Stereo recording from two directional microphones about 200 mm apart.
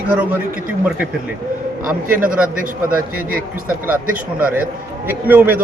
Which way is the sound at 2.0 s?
45° right (ahead or behind).